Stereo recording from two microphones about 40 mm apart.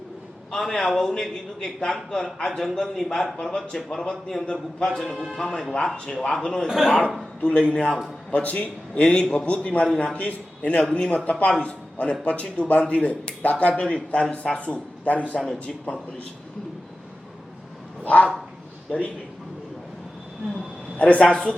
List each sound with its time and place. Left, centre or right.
0.5 s a man's voice: centre
6.4 s speech: centre
6.7 s a man's voice: centre
7.4 s speech: left
8.3 s a man's voice: left
9.8 s speech: left
10.2 s a man's voice: left
14.6 s a man's voice: left
18.0 s a sound: left
18.9 s a man's voice: left
21.0 s a man's voice: left
21.2 s a man's voice: centre